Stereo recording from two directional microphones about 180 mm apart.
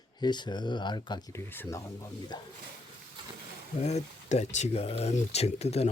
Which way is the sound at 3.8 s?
40° left (ahead or behind).